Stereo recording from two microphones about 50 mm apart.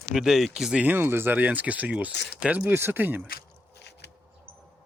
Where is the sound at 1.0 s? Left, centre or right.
Right.